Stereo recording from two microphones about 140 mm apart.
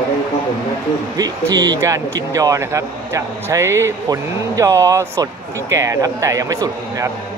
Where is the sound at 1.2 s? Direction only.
25° right (ahead or behind).